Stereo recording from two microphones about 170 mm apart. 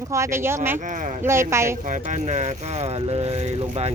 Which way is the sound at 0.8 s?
50° right (ahead or behind).